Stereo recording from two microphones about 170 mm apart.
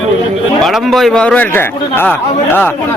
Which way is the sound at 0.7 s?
Centre (ahead or behind).